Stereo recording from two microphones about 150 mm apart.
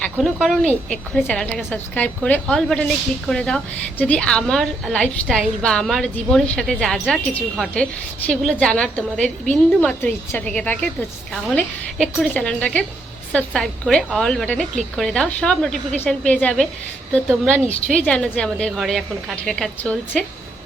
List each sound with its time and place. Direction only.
0.2 s a woman's voice: centre (ahead or behind)
17.9 s a woman's voice: 10° left (ahead or behind)